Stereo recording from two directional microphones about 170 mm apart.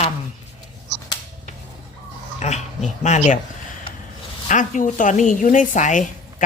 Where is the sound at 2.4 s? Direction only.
40° left (ahead or behind).